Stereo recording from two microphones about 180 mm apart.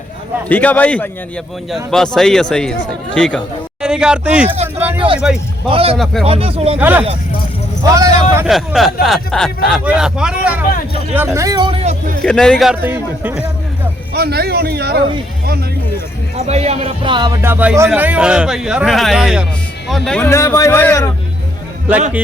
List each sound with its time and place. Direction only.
0.4 s a man's voice: 10° left (ahead or behind)
4.9 s speech: 30° right (ahead or behind)
6.7 s speech: 10° right (ahead or behind)
8.4 s speech: centre (ahead or behind); by 11.9 s 35° right (ahead or behind)
12.2 s speech: 5° left (ahead or behind)
12.8 s speech: 10° right (ahead or behind)
14.1 s a man's voice: 60° right (ahead or behind)
16.5 s music: 35° right (ahead or behind)
17.4 s speech: 10° right (ahead or behind); by 21.1 s 15° left (ahead or behind)